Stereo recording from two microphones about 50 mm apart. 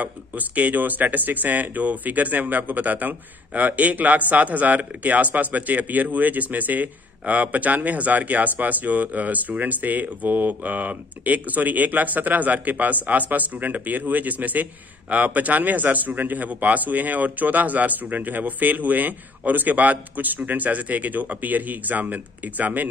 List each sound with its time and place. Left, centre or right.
0.0 s speech: right